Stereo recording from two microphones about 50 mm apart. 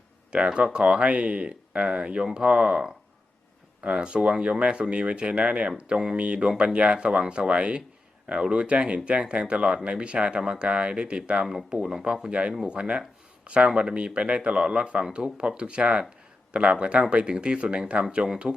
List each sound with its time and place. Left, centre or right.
0.3 s speech: right
6.5 s speech: centre
6.7 s speech: right
11.7 s speech: centre